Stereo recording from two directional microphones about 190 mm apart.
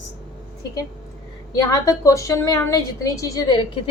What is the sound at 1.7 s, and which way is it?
A woman's voice, 15° left (ahead or behind).